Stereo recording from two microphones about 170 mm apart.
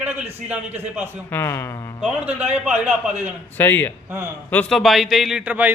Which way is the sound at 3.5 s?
10° left (ahead or behind).